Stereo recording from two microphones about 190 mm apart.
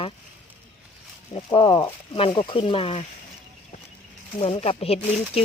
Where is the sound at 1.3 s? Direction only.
30° left (ahead or behind).